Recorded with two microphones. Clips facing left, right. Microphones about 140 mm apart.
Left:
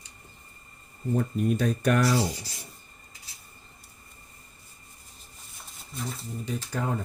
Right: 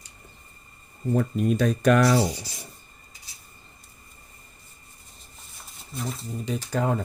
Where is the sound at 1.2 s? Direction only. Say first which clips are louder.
Right 3 dB; 90° right.